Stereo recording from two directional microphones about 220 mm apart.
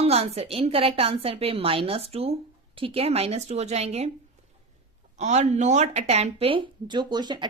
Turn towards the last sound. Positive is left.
turn(degrees=-20)  # may be behind; listen again after turning